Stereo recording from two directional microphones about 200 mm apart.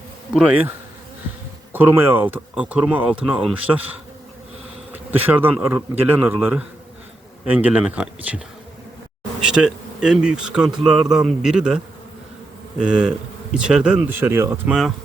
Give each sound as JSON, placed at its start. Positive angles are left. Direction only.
{"t": 0.3, "sound": "speech", "side_deg": -5}
{"t": 1.7, "sound": "speech", "side_deg": -10}
{"t": 5.2, "sound": "speech", "side_deg": -10}
{"t": 9.4, "sound": "speech", "side_deg": -5}
{"t": 12.8, "sound": "speech", "side_deg": -5}